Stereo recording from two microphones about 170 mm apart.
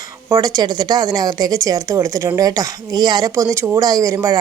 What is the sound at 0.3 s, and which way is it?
Speech, 20° right (ahead or behind).